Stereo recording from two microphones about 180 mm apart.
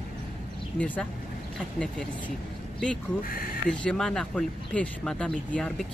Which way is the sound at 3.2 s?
55° left (ahead or behind).